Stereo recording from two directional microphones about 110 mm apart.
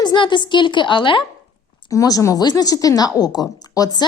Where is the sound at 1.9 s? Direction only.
30° left (ahead or behind).